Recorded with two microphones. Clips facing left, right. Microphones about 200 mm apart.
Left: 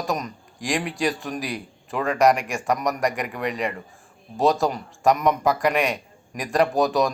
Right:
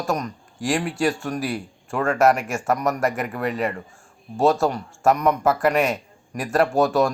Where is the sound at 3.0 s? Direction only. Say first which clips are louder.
Right 1 dB; 15° left (ahead or behind).